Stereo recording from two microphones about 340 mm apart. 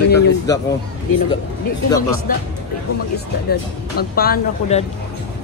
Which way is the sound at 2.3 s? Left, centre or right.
Left.